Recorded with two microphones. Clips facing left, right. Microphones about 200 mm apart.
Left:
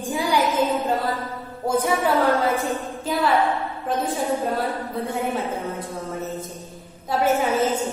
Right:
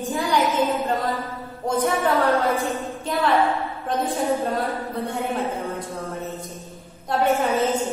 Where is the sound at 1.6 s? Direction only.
5° left (ahead or behind).